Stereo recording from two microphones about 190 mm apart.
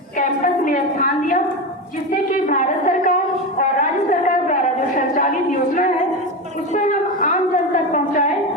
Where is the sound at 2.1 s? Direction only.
45° left (ahead or behind).